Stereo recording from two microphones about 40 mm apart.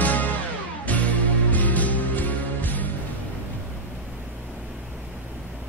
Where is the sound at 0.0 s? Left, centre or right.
Left.